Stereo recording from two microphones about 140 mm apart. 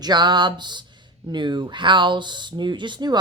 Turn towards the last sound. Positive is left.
turn(degrees=-30)  # may be behind; listen again after turning